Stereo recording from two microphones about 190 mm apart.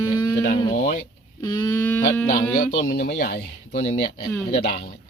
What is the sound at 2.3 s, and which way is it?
Speech, 50° left (ahead or behind).